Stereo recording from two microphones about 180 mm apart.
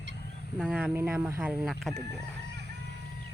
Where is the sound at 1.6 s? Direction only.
Centre (ahead or behind).